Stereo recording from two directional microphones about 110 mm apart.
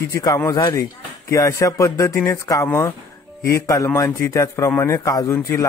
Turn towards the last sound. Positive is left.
turn(degrees=25)  # may be behind; listen again after turning